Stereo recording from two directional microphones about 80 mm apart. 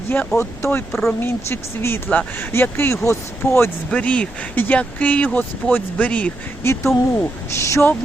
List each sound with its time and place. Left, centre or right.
0.3 s speech: left
3.9 s speech: centre
6.7 s speech: left